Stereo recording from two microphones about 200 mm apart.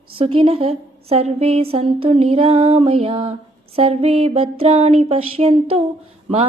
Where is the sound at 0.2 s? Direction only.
30° right (ahead or behind).